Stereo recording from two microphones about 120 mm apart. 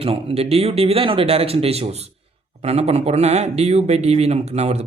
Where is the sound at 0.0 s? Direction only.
55° right (ahead or behind).